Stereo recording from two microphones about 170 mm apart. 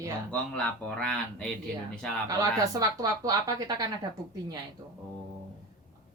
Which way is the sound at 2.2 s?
20° right (ahead or behind).